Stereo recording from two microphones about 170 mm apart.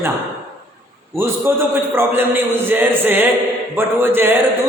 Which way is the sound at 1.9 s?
10° right (ahead or behind).